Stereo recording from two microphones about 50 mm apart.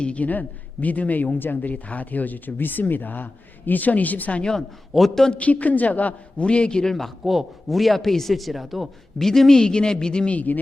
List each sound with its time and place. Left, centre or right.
0.0 s a man's voice: left
4.9 s a man's voice: centre
5.3 s a man's voice: left
6.9 s a man's voice: centre
10.3 s a man's voice: left